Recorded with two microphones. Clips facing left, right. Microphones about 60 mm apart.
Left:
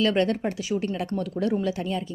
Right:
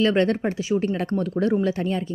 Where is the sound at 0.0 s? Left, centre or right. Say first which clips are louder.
Right 3 dB; right.